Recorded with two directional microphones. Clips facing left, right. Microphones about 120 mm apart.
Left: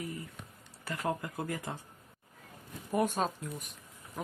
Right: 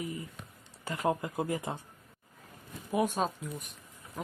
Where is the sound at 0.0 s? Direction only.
20° right (ahead or behind).